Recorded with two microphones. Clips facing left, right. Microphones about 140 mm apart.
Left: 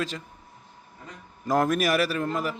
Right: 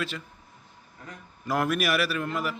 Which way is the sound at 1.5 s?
40° left (ahead or behind).